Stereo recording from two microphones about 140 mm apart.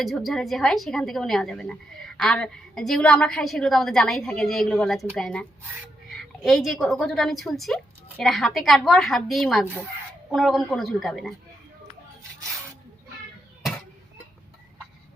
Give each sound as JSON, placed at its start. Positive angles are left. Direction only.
{"t": 0.0, "sound": "a woman's voice", "side_deg": 0}